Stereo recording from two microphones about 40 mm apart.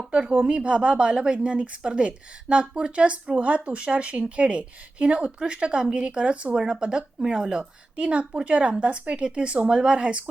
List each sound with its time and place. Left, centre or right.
0.1 s speech: right; by 7.7 s centre
7.9 s speech: right